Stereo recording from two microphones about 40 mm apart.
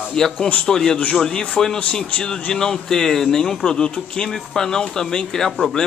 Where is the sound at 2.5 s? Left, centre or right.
Centre.